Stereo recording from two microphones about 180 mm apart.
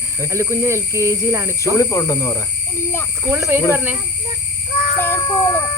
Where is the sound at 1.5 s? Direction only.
15° left (ahead or behind).